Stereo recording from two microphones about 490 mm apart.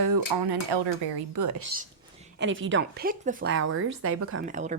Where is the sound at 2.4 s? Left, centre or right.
Right.